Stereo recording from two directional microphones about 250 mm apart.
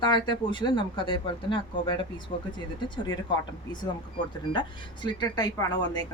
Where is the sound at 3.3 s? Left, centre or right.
Centre.